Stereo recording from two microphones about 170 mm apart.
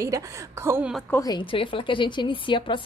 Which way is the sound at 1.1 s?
20° left (ahead or behind).